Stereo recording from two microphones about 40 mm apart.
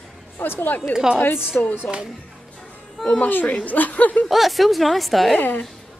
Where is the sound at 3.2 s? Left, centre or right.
Left.